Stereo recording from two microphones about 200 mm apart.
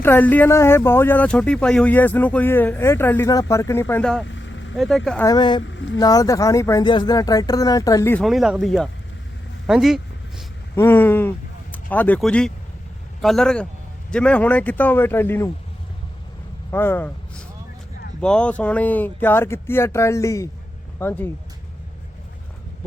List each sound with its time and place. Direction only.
0.0 s speech: 10° left (ahead or behind)
4.3 s vehicle: 70° left (ahead or behind)
4.8 s speech: centre (ahead or behind)
5.2 s speech: 20° left (ahead or behind)
5.6 s speech: 65° left (ahead or behind)
6.0 s speech: 20° left (ahead or behind)
8.2 s speech: centre (ahead or behind)
9.6 s a sound: 5° right (ahead or behind)
10.8 s speech: 10° left (ahead or behind)
16.7 s speech: 10° left (ahead or behind)